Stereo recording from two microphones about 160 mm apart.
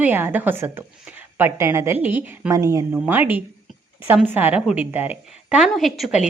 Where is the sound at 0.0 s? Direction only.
15° right (ahead or behind).